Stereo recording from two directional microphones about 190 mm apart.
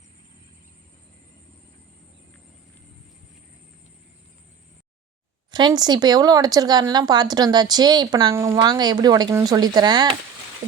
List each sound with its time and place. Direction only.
5.5 s speech: 25° right (ahead or behind)